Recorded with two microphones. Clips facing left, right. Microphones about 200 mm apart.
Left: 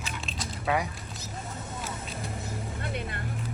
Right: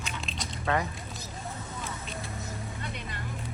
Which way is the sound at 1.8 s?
5° left (ahead or behind).